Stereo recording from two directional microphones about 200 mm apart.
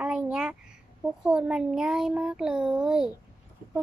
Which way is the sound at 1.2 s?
5° right (ahead or behind).